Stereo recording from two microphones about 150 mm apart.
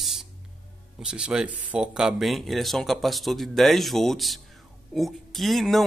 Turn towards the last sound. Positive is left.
turn(degrees=0)  # may be behind; listen again after turning